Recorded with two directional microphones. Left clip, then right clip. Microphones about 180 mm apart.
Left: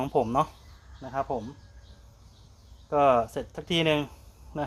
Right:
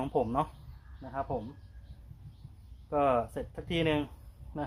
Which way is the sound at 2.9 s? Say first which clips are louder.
Left 6 dB; 25° left (ahead or behind).